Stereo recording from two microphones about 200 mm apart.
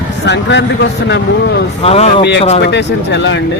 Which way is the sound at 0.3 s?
60° left (ahead or behind).